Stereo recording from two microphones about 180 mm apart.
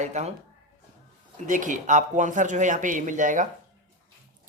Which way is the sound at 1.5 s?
45° right (ahead or behind).